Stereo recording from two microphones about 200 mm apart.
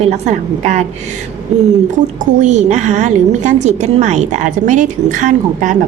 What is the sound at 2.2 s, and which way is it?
A woman's voice, 35° right (ahead or behind).